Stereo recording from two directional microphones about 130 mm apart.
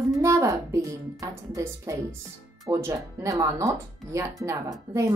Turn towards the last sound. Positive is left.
turn(degrees=-25)  # may be behind; listen again after turning